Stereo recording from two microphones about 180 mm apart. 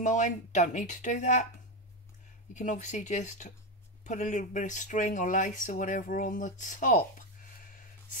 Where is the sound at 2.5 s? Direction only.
45° left (ahead or behind).